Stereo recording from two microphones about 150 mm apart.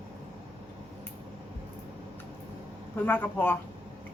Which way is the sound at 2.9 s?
15° left (ahead or behind).